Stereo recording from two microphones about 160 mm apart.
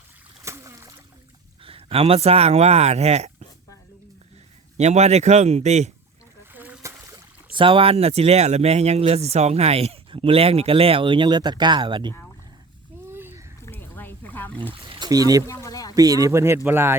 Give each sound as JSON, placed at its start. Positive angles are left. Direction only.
{"t": 0.4, "sound": "splash", "side_deg": -15}
{"t": 1.6, "sound": "speech", "side_deg": -35}
{"t": 4.8, "sound": "speech", "side_deg": -45}
{"t": 6.5, "sound": "splash", "side_deg": -10}
{"t": 7.5, "sound": "speech", "side_deg": -35}
{"t": 13.1, "sound": "a sound", "side_deg": -15}
{"t": 13.6, "sound": "a sound", "side_deg": 15}
{"t": 14.7, "sound": "speech", "side_deg": -30}
{"t": 15.4, "sound": "a sound", "side_deg": 20}
{"t": 16.0, "sound": "speech", "side_deg": -20}